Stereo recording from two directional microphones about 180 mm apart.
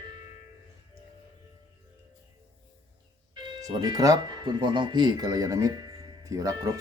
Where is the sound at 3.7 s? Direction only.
25° right (ahead or behind).